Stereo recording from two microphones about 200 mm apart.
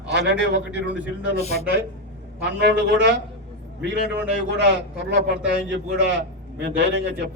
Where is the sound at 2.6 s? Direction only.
55° right (ahead or behind).